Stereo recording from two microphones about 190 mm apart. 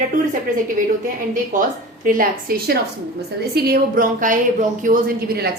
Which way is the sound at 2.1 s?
50° right (ahead or behind).